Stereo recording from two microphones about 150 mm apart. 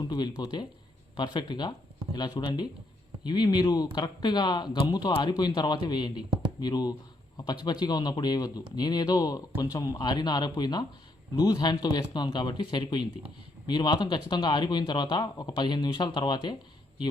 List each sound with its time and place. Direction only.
0.1 s speech: 25° left (ahead or behind)